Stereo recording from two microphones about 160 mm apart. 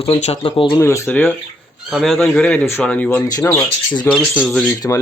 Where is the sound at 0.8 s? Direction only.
20° left (ahead or behind).